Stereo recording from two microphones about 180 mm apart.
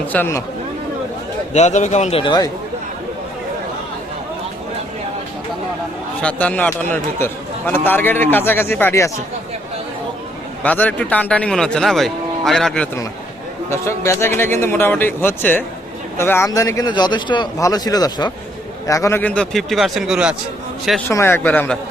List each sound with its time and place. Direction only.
0.1 s a man's voice: 10° left (ahead or behind)
1.5 s a man's voice: 40° left (ahead or behind); by 2.5 s 25° left (ahead or behind)
6.2 s a man's voice: 10° left (ahead or behind)
10.6 s a man's voice: 10° left (ahead or behind)
13.7 s a man's voice: 15° left (ahead or behind); by 20.3 s 5° right (ahead or behind)
21.1 s a man's voice: 15° left (ahead or behind)